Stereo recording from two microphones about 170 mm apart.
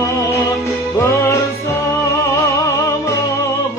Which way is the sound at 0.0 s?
15° left (ahead or behind).